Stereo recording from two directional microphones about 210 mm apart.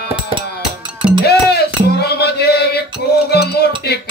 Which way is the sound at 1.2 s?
50° left (ahead or behind).